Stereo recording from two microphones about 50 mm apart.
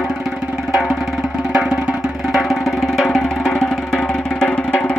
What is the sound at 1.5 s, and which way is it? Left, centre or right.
Music, centre.